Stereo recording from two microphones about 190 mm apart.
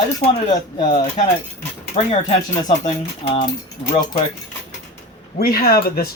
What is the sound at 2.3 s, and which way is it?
Speech, 35° left (ahead or behind).